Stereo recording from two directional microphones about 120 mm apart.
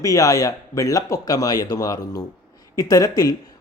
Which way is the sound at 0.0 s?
30° left (ahead or behind).